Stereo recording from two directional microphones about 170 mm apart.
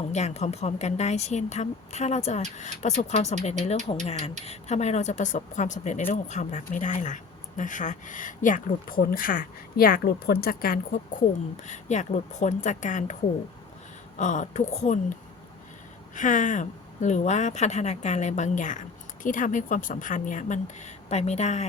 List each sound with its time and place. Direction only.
0.1 s speech: 40° left (ahead or behind); by 11.0 s 60° left (ahead or behind)
11.6 s speech: 45° left (ahead or behind)
14.2 s speech: 45° left (ahead or behind)
16.1 s speech: 50° left (ahead or behind)